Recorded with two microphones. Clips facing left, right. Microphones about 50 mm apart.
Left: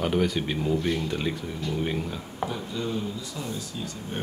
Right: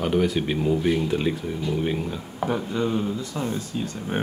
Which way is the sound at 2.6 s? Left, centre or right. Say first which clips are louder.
Right 6 dB; right.